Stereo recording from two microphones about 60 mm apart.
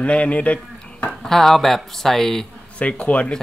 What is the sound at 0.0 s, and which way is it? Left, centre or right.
Speech, left.